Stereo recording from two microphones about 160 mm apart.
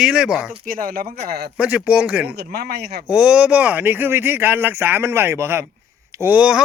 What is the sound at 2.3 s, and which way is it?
Speech, 90° right.